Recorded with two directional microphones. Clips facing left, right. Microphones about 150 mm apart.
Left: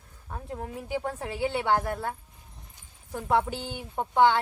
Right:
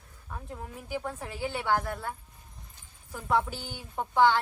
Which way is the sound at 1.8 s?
50° left (ahead or behind).